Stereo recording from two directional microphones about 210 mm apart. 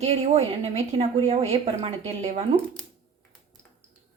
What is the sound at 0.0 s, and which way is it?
A woman's voice, 30° right (ahead or behind).